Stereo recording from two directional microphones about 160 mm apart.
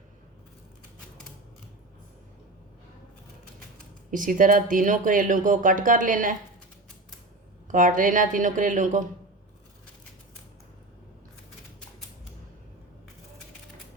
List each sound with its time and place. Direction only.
4.1 s speech: 55° right (ahead or behind)
7.7 s speech: 55° right (ahead or behind)